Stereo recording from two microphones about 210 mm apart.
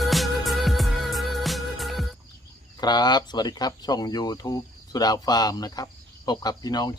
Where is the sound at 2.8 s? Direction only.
20° left (ahead or behind).